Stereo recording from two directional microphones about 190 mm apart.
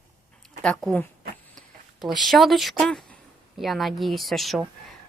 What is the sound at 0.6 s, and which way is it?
Speech, 5° left (ahead or behind).